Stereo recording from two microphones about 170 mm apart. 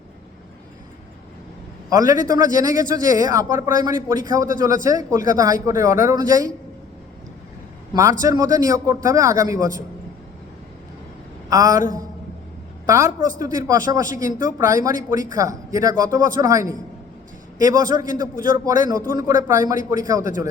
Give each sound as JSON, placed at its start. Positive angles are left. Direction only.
{"t": 1.9, "sound": "speech", "side_deg": -20}
{"t": 8.2, "sound": "speech", "side_deg": -20}
{"t": 11.4, "sound": "a sound", "side_deg": -20}
{"t": 12.8, "sound": "a woman's voice", "side_deg": -20}